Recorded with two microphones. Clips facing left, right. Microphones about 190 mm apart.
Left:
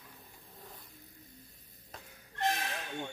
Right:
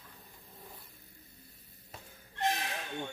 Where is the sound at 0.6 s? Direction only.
10° right (ahead or behind).